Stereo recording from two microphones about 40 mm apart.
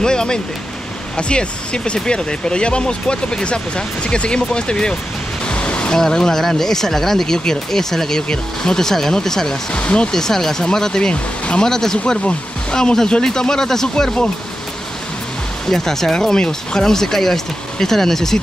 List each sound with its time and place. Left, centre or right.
0.0 s speech: centre
5.5 s pink noise: left
5.9 s speech: centre
9.7 s speech: left
10.1 s speech: centre
11.6 s speech: centre
15.6 s speech: centre